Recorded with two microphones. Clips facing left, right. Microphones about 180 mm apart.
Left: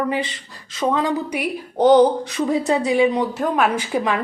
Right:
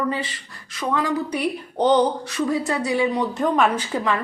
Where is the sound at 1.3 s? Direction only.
10° left (ahead or behind).